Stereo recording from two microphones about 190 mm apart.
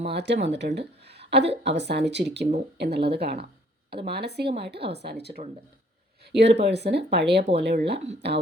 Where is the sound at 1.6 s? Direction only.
65° right (ahead or behind).